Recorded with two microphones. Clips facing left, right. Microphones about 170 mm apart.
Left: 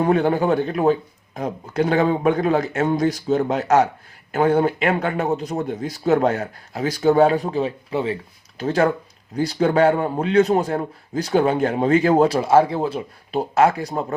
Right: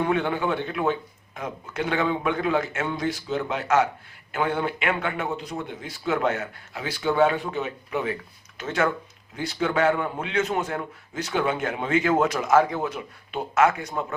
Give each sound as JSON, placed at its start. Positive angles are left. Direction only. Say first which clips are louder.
{"t": 0.0, "sound": "a man's voice", "louder": "left 6 dB", "side_deg": 40}